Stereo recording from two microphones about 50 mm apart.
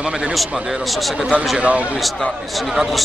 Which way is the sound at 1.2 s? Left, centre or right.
Right.